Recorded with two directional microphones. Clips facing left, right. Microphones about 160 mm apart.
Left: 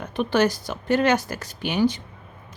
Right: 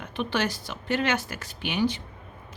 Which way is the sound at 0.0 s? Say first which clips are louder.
Left 7 dB; 45° left (ahead or behind).